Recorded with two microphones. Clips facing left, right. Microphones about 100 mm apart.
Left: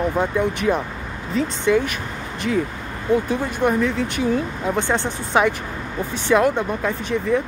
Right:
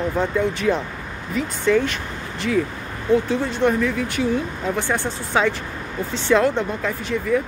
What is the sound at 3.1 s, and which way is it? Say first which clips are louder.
Speech: right 1 dB; 15° left (ahead or behind).